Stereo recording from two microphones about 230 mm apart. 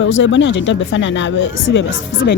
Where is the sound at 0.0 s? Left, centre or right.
Left.